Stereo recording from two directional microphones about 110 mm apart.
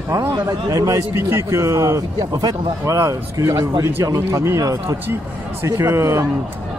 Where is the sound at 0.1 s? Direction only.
30° right (ahead or behind).